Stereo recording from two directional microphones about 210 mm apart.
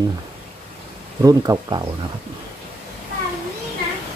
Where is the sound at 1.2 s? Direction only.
15° right (ahead or behind).